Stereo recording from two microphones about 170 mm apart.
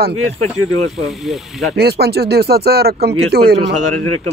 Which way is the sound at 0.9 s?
Centre (ahead or behind).